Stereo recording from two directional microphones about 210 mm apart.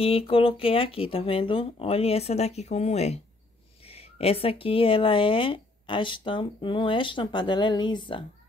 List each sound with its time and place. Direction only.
0.0 s speech: 25° left (ahead or behind)